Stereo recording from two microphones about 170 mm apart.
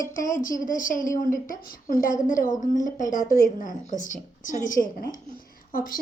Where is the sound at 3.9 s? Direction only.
50° left (ahead or behind).